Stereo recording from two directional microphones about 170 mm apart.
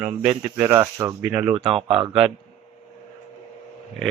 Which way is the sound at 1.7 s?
30° right (ahead or behind).